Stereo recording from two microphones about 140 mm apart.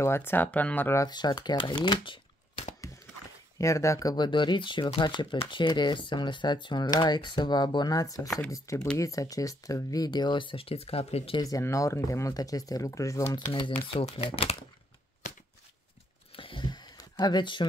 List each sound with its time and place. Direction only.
0.0 s speech: 15° left (ahead or behind)
1.0 s speech: 30° left (ahead or behind)
3.5 s speech: 20° left (ahead or behind); by 11.4 s 45° left (ahead or behind)
11.4 s speech: 25° left (ahead or behind)
13.5 s speech: 35° left (ahead or behind)
16.3 s a sound: 35° left (ahead or behind)